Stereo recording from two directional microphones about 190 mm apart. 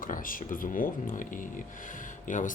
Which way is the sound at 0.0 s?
45° left (ahead or behind).